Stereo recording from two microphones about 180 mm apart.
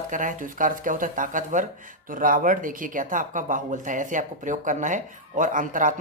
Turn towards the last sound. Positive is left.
turn(degrees=-45)  # may be behind; listen again after turning